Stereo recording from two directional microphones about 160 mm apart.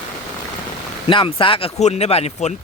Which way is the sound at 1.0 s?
30° left (ahead or behind).